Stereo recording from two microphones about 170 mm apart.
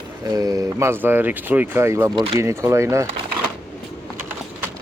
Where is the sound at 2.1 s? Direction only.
30° right (ahead or behind).